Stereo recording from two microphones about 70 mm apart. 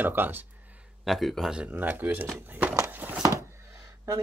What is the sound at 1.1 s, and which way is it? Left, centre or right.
Speech, centre.